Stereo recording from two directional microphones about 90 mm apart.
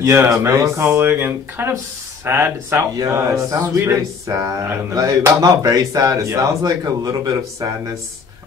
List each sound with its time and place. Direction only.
0.0 s speech: 30° right (ahead or behind)